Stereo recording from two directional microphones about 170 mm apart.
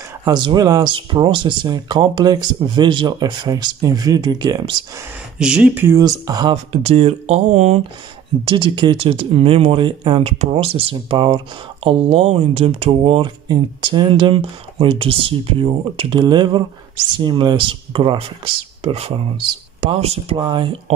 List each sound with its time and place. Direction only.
0.2 s speech: 25° right (ahead or behind)
5.4 s speech: 5° right (ahead or behind); by 6.5 s 25° right (ahead or behind)
6.5 s speech: 35° right (ahead or behind)